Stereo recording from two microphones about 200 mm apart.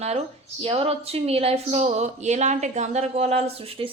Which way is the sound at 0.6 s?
30° right (ahead or behind).